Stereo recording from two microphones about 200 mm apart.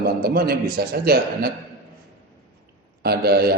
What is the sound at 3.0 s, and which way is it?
Speech, 50° right (ahead or behind).